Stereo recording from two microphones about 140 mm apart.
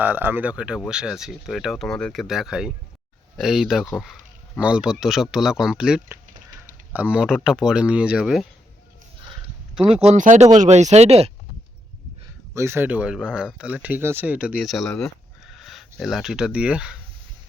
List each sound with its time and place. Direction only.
0.0 s speech: 15° right (ahead or behind)
10.1 s speech: 60° right (ahead or behind)
12.5 s speech: 15° right (ahead or behind)